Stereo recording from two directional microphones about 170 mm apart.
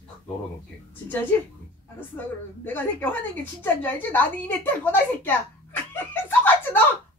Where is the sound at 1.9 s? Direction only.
10° left (ahead or behind).